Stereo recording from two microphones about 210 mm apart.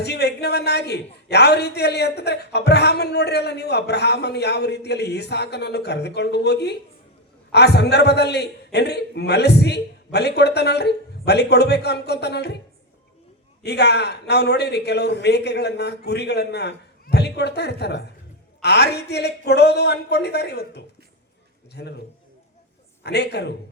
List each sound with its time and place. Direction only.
0.0 s a man's voice: 50° left (ahead or behind)
13.6 s a man's voice: 50° left (ahead or behind)
23.0 s a man's voice: 50° left (ahead or behind)